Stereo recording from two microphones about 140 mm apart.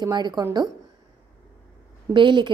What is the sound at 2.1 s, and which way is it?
Speech, 35° right (ahead or behind).